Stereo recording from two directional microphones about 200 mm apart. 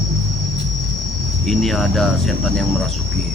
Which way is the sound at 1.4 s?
Centre (ahead or behind).